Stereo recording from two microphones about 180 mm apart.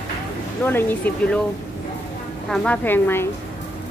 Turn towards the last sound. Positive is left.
turn(degrees=10)  # may be behind; listen again after turning